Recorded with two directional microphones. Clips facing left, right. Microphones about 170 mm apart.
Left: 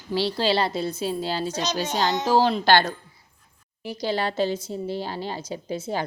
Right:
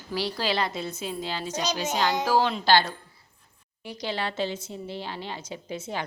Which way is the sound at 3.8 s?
30° left (ahead or behind).